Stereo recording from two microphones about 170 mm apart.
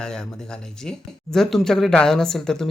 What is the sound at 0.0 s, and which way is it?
Speech, 5° left (ahead or behind).